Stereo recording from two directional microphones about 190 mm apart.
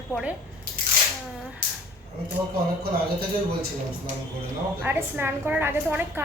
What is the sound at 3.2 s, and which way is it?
Speech, 50° right (ahead or behind).